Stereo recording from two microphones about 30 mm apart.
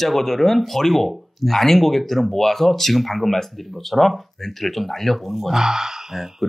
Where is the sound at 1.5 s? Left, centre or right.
Centre.